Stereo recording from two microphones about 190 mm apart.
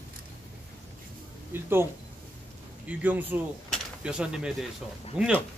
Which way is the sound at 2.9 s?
10° right (ahead or behind).